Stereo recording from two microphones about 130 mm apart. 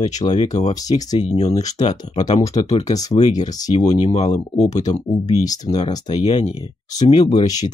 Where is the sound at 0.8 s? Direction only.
30° left (ahead or behind).